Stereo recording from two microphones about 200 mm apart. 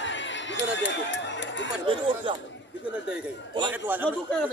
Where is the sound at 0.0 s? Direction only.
65° left (ahead or behind).